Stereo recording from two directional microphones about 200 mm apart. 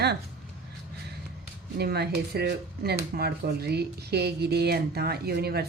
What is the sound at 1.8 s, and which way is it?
Speech, 55° right (ahead or behind).